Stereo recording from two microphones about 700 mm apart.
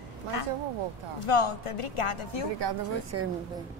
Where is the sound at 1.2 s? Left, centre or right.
Left.